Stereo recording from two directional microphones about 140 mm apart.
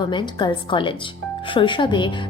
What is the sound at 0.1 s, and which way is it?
A woman's voice, 35° left (ahead or behind).